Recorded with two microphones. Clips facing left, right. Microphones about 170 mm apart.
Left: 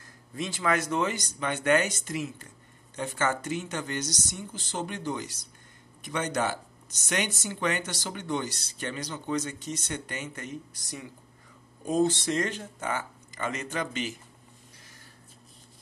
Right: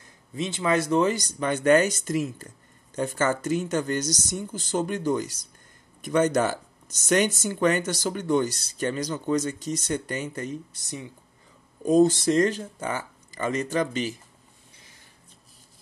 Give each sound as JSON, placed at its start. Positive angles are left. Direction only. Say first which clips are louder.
{"t": 0.0, "sound": "speech", "louder": "right 4 dB", "side_deg": -25}
{"t": 11.8, "sound": "speech", "louder": "right 7 dB", "side_deg": -40}